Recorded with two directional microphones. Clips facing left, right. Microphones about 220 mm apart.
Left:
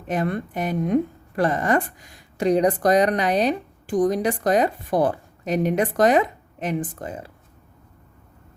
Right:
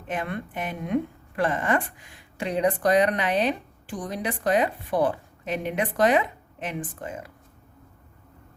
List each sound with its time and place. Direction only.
0.1 s speech: 40° left (ahead or behind)